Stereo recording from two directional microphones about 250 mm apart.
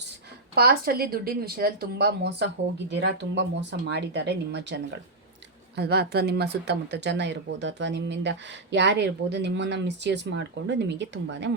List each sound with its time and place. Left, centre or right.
0.5 s speech: right